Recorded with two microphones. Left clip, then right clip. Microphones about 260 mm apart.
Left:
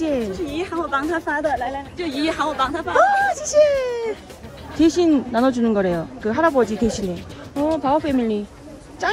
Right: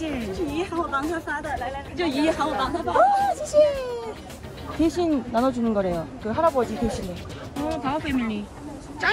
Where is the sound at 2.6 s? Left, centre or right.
Centre.